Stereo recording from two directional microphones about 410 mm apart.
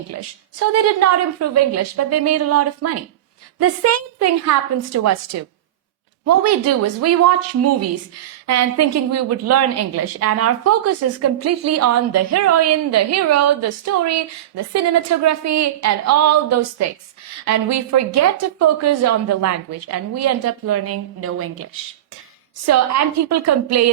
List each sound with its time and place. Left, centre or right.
0.1 s a woman's voice: right
23.3 s a woman's voice: right